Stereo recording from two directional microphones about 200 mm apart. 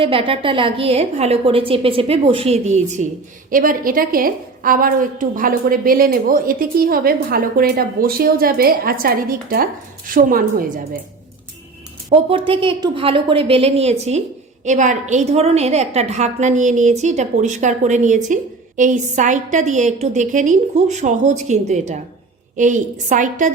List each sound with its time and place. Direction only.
0.0 s a woman's voice: 25° right (ahead or behind); by 11.0 s 45° right (ahead or behind)
12.0 s a woman's voice: 30° right (ahead or behind)